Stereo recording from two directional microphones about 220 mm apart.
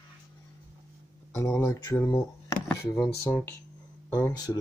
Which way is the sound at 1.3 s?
10° left (ahead or behind).